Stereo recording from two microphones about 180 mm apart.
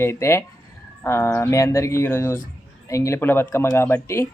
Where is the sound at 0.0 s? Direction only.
15° left (ahead or behind).